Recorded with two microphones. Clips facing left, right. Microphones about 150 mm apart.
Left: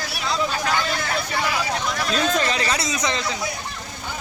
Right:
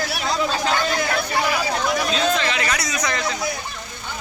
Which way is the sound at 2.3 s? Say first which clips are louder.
Even; 40° left (ahead or behind).